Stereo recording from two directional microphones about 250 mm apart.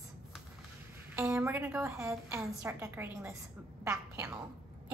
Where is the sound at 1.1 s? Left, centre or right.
Centre.